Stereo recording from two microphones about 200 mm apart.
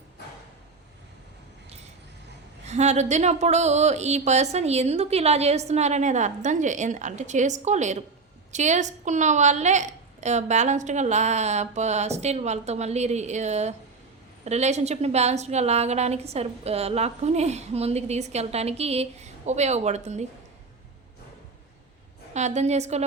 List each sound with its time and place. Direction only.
2.6 s a woman's voice: 35° right (ahead or behind)
22.3 s a woman's voice: 35° right (ahead or behind)